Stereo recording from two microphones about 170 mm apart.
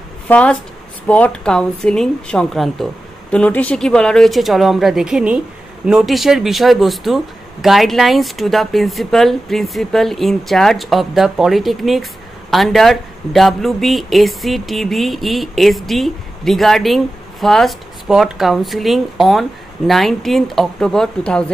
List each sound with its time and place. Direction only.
0.3 s speech: 5° left (ahead or behind)